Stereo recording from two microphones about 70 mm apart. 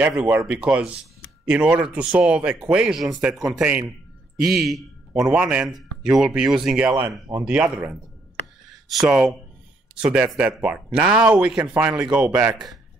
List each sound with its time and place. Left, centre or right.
0.0 s a man's voice: right; by 4.8 s centre
5.3 s speech: centre
5.7 s speech: centre
8.6 s speech: centre